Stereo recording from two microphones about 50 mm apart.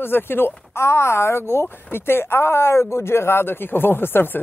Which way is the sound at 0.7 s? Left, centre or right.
Left.